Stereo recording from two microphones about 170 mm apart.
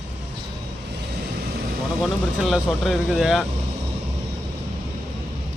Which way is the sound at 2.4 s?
Centre (ahead or behind).